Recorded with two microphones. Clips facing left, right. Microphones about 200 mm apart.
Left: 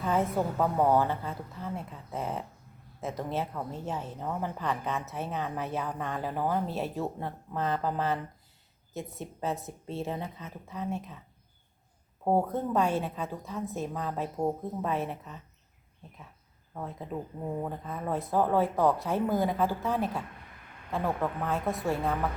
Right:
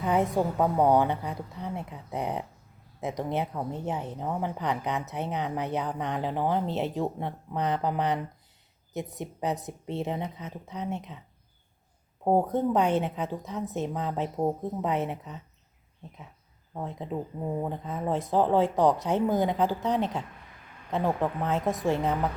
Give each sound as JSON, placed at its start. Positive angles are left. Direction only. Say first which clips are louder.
{"t": 0.0, "sound": "a woman's voice", "louder": "right 3 dB", "side_deg": -15}
{"t": 12.2, "sound": "speech", "louder": "right 3 dB", "side_deg": -15}